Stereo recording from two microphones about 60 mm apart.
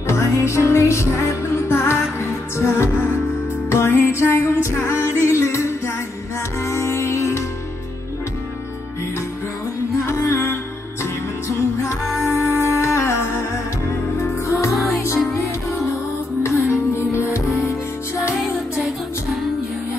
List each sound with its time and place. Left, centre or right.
0.0 s music: left
10.0 s music: left
11.4 s music: left